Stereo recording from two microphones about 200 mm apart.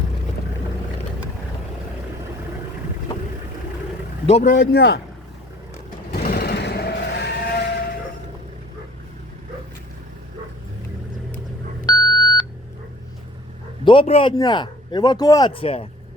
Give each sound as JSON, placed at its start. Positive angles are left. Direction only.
{"t": 4.3, "sound": "speech", "side_deg": 30}
{"t": 4.5, "sound": "a man's voice", "side_deg": 60}
{"t": 6.1, "sound": "vehicle", "side_deg": 50}
{"t": 11.9, "sound": "beep", "side_deg": 20}
{"t": 13.8, "sound": "a man's voice", "side_deg": 25}